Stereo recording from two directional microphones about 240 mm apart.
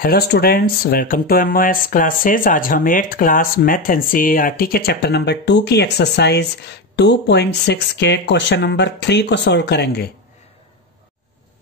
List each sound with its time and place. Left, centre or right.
0.0 s speech: left